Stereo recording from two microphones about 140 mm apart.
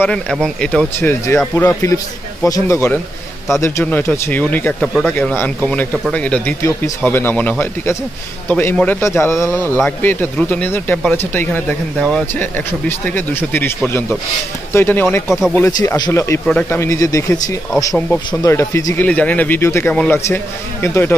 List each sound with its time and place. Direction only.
0.0 s speech: 5° left (ahead or behind)
0.9 s a man's voice: 20° left (ahead or behind)
15.2 s speech: 5° right (ahead or behind)
15.5 s a man's voice: 20° left (ahead or behind)
18.9 s a man's voice: 10° left (ahead or behind)